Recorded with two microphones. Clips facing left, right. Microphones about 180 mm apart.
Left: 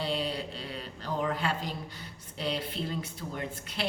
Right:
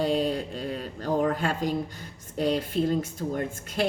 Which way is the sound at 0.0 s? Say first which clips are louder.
Right 7 dB; 45° right (ahead or behind).